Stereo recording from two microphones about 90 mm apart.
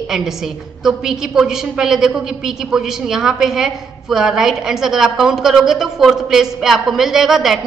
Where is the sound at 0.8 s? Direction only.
5° right (ahead or behind).